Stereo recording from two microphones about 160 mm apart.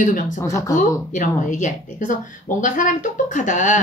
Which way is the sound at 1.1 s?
50° left (ahead or behind).